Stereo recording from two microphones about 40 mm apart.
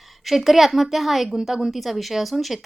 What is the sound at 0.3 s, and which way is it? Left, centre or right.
Speech, centre.